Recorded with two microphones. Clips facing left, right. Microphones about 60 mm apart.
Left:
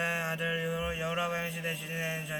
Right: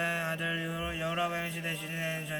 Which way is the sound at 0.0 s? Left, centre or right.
Centre.